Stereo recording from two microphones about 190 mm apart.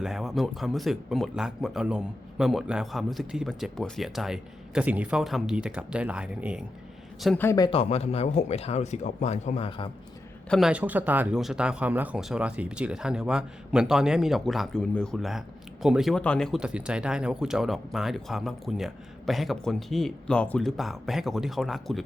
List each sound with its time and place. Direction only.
0.0 s speech: centre (ahead or behind)
7.4 s speech: 20° left (ahead or behind)
7.7 s speech: 30° left (ahead or behind)
10.5 s speech: 5° right (ahead or behind)